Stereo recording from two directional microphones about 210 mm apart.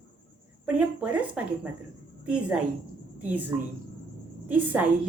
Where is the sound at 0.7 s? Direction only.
5° right (ahead or behind).